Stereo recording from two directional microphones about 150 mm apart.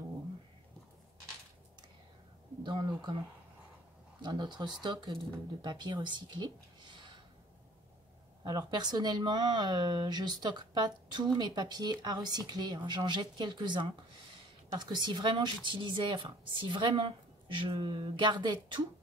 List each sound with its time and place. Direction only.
2.6 s speech: 30° right (ahead or behind)
8.5 s speech: 25° right (ahead or behind)